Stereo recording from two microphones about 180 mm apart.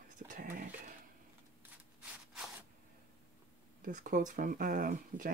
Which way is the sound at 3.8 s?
45° right (ahead or behind).